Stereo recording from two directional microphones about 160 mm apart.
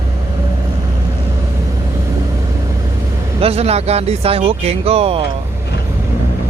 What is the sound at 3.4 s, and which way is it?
Speech, 40° right (ahead or behind).